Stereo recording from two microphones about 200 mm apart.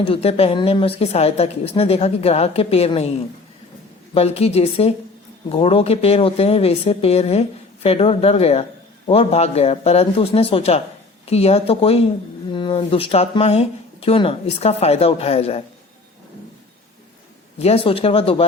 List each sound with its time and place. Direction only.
0.0 s speech: 30° left (ahead or behind)
17.6 s speech: 30° left (ahead or behind)